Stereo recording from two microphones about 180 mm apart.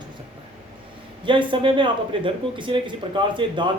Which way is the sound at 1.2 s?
25° right (ahead or behind).